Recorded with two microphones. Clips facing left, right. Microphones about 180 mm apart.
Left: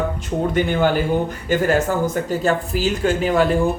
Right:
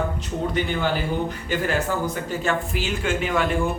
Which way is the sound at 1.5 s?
45° left (ahead or behind).